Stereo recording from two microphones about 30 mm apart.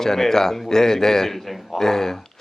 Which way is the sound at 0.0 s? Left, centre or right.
Centre.